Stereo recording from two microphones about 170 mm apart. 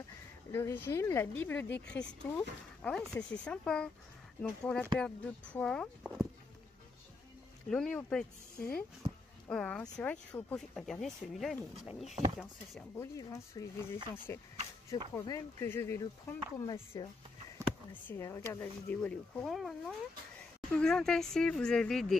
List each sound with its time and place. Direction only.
0.5 s speech: 15° left (ahead or behind)
7.7 s speech: 5° left (ahead or behind)
13.0 s speech: 20° left (ahead or behind)
18.0 s speech: 15° left (ahead or behind)